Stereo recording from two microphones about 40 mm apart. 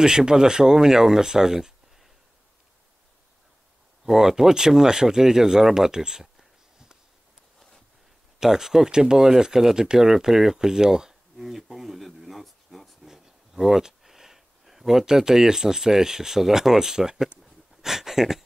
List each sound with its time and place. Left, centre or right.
0.0 s speech: centre
4.0 s speech: centre
8.4 s speech: centre
11.4 s a sound: centre
13.0 s speech: centre
17.4 s a sound: centre